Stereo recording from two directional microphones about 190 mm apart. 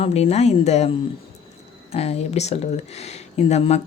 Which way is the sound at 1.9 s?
35° left (ahead or behind).